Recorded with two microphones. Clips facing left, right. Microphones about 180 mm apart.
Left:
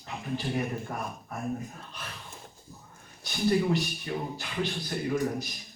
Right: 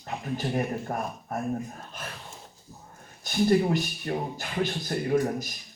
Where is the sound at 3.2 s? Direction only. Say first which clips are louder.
Right 4 dB; 45° right (ahead or behind).